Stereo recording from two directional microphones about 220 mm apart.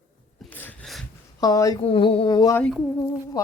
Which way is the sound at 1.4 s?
15° left (ahead or behind).